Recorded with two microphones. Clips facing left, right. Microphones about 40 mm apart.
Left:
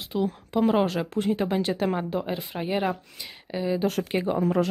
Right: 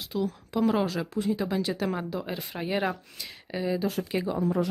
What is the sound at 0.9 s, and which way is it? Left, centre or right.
Speech, left.